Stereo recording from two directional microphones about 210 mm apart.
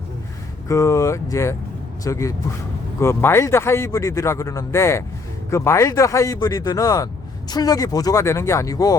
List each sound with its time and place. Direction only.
0.7 s a man's voice: 15° left (ahead or behind)